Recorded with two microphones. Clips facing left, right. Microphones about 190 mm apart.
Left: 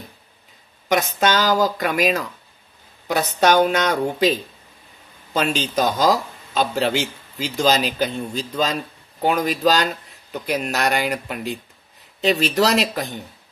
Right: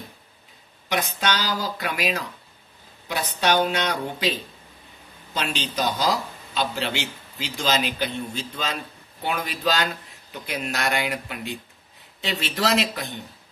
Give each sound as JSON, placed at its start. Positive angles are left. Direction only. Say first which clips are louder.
{"t": 0.8, "sound": "speech", "louder": "left 6 dB", "side_deg": 45}